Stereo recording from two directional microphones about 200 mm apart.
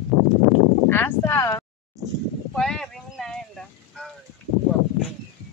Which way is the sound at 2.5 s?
5° left (ahead or behind).